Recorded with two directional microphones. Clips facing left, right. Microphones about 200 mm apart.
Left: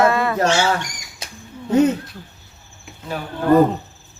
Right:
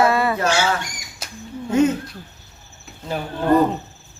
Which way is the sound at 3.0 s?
25° right (ahead or behind).